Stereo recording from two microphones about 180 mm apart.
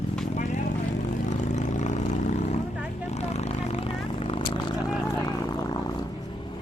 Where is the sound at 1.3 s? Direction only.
40° left (ahead or behind).